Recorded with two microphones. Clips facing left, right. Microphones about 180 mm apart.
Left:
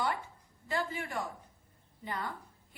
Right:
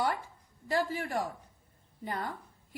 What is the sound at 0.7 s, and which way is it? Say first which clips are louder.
Speech: right 4 dB; 35° right (ahead or behind).